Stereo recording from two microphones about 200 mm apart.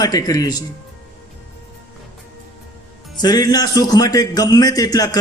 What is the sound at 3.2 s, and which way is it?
A man's voice, 20° left (ahead or behind).